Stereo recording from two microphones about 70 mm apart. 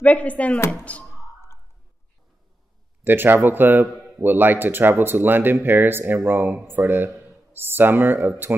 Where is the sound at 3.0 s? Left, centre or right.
Right.